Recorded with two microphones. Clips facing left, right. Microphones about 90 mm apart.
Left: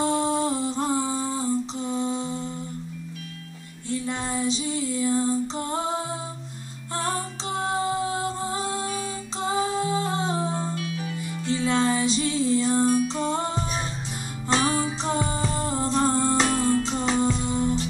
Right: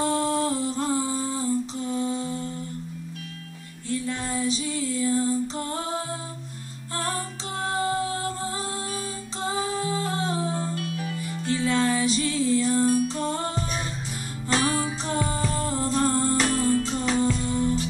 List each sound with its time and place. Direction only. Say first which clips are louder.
0.0 s humming: left 1 dB; 20° left (ahead or behind)
3.9 s female singing: even; 20° left (ahead or behind)
7.6 s music: even; 20° left (ahead or behind)
9.4 s music: left 3 dB; 20° left (ahead or behind)
10.8 s music: even; 45° right (ahead or behind)
11.5 s music: left 1 dB; 20° left (ahead or behind)